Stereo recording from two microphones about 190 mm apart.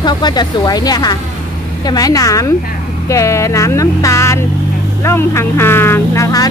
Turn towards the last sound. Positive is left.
turn(degrees=15)  # may be behind; listen again after turning